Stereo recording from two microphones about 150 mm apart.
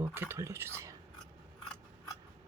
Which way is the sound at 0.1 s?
15° right (ahead or behind).